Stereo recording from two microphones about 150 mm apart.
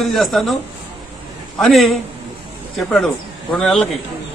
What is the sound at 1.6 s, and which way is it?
A man's voice, centre (ahead or behind).